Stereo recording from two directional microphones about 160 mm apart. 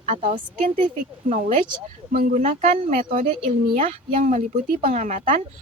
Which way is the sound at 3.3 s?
35° right (ahead or behind).